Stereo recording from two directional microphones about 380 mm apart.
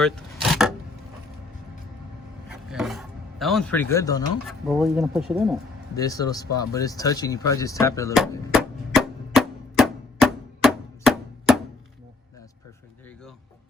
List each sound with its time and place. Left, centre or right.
0.0 s vehicle: centre
2.5 s a man's voice: centre
6.7 s a sound: centre